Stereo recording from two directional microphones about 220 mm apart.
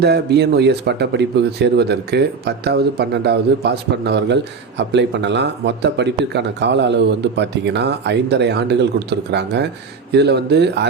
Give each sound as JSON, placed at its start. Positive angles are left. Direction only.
{"t": 0.0, "sound": "speech", "side_deg": -50}